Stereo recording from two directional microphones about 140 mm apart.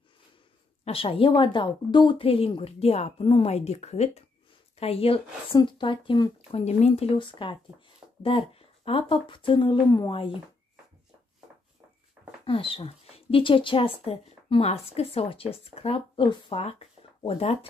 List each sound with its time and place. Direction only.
0.8 s a woman's voice: 40° left (ahead or behind)
6.5 s a woman's voice: 50° left (ahead or behind); by 10.1 s 30° left (ahead or behind)
12.4 s speech: 40° left (ahead or behind)